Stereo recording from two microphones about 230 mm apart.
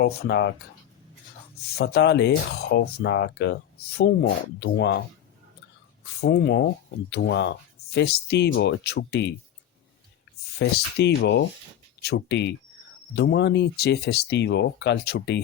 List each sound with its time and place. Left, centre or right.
0.0 s speech: left
1.8 s speech: left
6.2 s speech: left
10.6 s speech: left